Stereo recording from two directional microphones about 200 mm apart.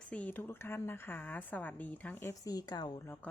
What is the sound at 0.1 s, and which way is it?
A woman's voice, 5° left (ahead or behind).